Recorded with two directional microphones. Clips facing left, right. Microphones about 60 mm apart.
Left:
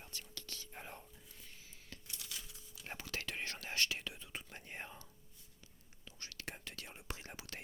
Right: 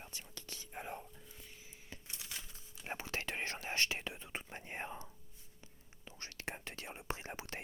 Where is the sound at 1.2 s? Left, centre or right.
Centre.